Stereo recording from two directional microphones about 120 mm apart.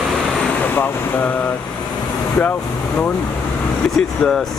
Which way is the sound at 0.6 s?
15° left (ahead or behind).